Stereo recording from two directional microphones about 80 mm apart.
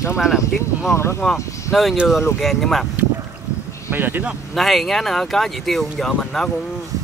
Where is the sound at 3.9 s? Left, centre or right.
Right.